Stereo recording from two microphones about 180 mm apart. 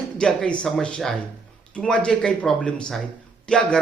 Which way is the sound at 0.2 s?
5° left (ahead or behind).